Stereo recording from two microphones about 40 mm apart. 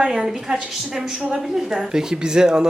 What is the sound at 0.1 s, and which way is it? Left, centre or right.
Speech, centre.